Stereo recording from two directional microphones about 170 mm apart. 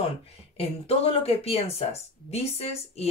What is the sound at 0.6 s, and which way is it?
Speech, 35° left (ahead or behind).